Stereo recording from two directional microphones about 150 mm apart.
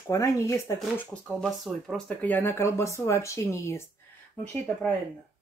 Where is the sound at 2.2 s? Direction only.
15° left (ahead or behind).